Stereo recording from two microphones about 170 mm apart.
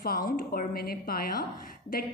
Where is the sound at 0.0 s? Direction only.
55° left (ahead or behind).